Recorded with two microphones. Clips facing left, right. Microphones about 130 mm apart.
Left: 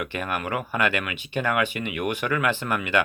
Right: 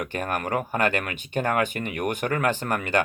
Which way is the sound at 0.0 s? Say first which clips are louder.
Right 1 dB; 40° right (ahead or behind).